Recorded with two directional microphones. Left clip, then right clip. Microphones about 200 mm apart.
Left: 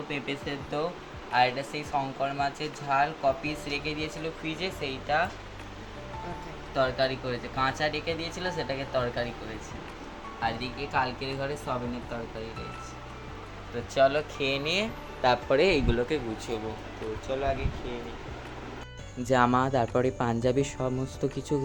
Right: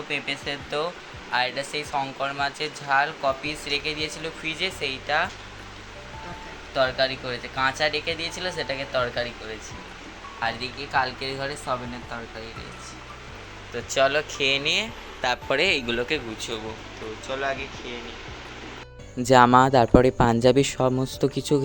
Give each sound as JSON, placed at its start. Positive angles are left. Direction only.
{"t": 0.1, "sound": "speech", "side_deg": 0}
{"t": 6.7, "sound": "speech", "side_deg": 0}
{"t": 10.4, "sound": "speech", "side_deg": -15}
{"t": 13.9, "sound": "speech", "side_deg": -5}
{"t": 19.2, "sound": "speech", "side_deg": -50}